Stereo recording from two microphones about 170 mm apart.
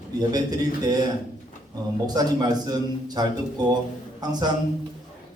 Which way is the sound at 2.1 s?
25° right (ahead or behind).